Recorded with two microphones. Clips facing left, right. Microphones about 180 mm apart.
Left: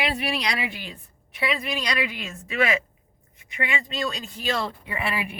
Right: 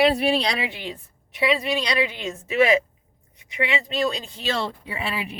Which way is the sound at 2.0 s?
25° right (ahead or behind).